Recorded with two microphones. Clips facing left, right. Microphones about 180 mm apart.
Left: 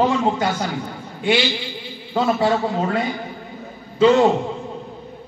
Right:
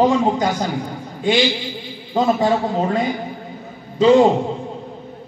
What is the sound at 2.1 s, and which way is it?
A man's voice, 15° right (ahead or behind).